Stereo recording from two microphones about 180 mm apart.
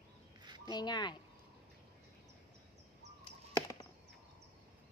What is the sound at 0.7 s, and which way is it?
Speech, 25° left (ahead or behind).